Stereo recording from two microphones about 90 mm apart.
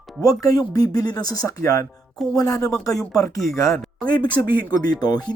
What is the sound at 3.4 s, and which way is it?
Speech, centre (ahead or behind).